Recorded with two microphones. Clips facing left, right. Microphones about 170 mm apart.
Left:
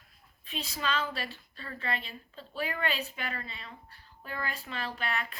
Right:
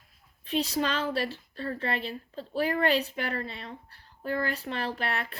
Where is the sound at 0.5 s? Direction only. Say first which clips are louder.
Right 11 dB; 70° right (ahead or behind).